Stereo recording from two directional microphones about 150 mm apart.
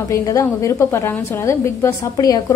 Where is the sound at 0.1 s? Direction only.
20° left (ahead or behind).